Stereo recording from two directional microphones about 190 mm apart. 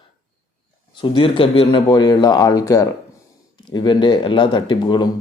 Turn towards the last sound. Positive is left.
turn(degrees=25)  # may be behind; listen again after turning